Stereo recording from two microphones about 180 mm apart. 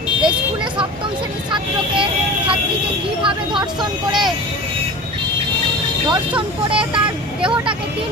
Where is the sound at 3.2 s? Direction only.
25° right (ahead or behind).